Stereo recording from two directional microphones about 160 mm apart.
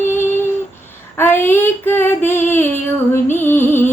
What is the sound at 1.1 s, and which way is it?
Female singing, 15° left (ahead or behind).